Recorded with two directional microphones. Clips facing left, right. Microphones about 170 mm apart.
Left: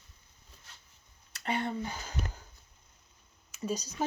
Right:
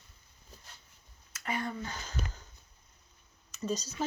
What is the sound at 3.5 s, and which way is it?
Speech, 10° left (ahead or behind).